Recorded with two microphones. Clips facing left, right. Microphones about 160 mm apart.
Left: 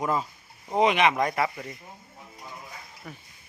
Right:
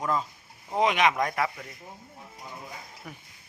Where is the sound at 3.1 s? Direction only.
10° right (ahead or behind).